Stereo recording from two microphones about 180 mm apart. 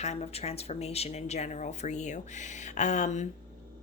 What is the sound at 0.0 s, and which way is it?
A woman's voice, 35° left (ahead or behind).